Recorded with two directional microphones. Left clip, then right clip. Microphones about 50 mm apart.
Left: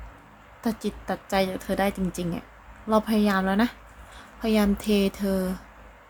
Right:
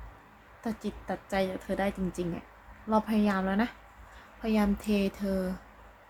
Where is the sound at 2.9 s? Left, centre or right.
Left.